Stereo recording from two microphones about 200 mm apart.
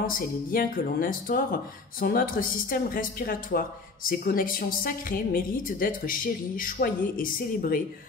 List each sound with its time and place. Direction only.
0.0 s speech: 45° left (ahead or behind)